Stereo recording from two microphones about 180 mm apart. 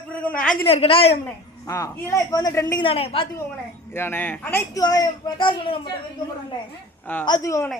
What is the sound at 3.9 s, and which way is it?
Speech, 10° left (ahead or behind).